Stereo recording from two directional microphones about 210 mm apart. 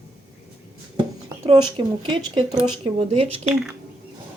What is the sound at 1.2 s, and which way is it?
Speech, 25° right (ahead or behind).